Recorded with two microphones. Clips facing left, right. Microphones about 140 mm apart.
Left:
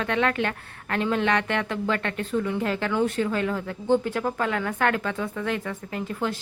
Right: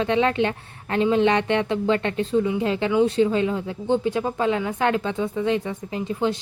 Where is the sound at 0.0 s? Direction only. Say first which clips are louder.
Right 4 dB; 20° right (ahead or behind).